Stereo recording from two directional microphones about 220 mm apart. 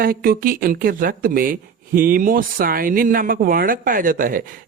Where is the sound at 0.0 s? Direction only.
40° right (ahead or behind).